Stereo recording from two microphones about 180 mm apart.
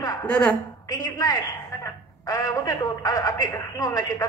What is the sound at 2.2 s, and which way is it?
A woman's voice, 20° left (ahead or behind).